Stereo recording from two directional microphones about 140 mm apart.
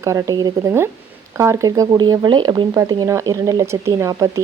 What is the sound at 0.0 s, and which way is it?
Speech, 20° right (ahead or behind).